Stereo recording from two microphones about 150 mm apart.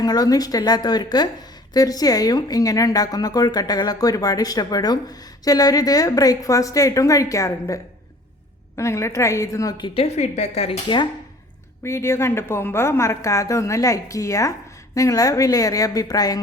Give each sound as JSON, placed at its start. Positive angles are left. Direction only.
{"t": 0.0, "sound": "a woman's voice", "side_deg": 25}
{"t": 11.8, "sound": "a woman's voice", "side_deg": 20}